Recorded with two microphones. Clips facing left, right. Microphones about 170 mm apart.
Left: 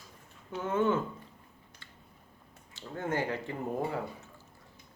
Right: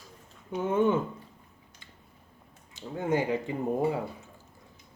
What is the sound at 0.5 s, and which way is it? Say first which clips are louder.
Speech: right 4 dB; 15° right (ahead or behind).